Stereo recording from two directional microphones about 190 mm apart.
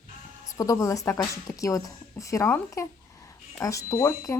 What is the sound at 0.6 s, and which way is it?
A woman's voice, 15° left (ahead or behind).